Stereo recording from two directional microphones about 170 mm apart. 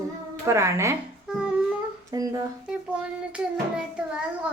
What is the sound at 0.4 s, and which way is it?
Speech, 15° right (ahead or behind).